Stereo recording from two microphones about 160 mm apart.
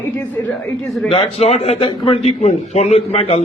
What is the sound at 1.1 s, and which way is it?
A man's voice, 40° left (ahead or behind).